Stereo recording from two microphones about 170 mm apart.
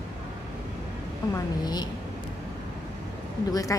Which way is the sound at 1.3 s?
25° left (ahead or behind).